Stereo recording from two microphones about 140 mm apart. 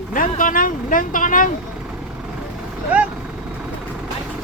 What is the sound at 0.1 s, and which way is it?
Speech, 70° left (ahead or behind).